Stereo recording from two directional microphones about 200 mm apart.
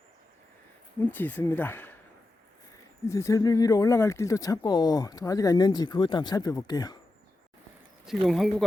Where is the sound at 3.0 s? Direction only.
15° left (ahead or behind).